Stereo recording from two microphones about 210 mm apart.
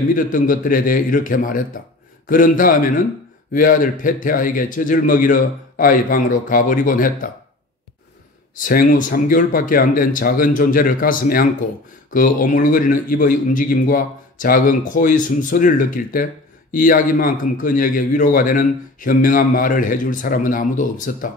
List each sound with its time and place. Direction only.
0.1 s a man's voice: 40° left (ahead or behind)
8.5 s a man's voice: 40° left (ahead or behind)